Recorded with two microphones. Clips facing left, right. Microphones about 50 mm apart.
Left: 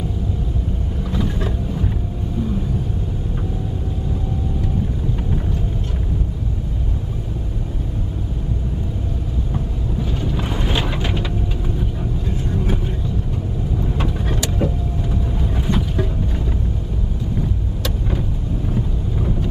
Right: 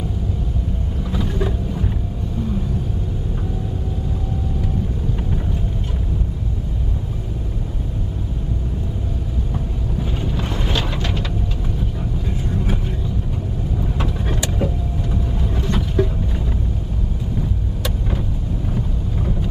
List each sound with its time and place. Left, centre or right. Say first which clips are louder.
1.1 s vehicle: even; centre
10.3 s boat: left 1 dB; centre
10.7 s a sound: left 2 dB; centre
12.4 s vehicle: left 1 dB; centre
13.7 s vehicle: left 1 dB; centre
15.6 s a sound: right 2 dB; centre
18.8 s boat: left 2 dB; centre